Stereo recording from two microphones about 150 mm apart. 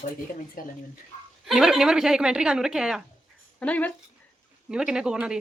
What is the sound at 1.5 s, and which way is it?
Speech, centre (ahead or behind).